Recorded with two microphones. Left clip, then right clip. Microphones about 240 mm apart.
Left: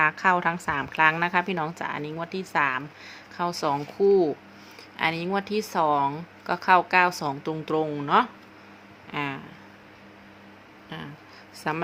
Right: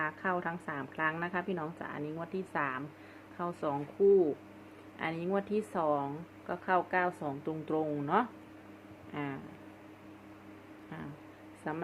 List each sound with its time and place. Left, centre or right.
0.0 s a woman's voice: left
11.6 s a woman's voice: left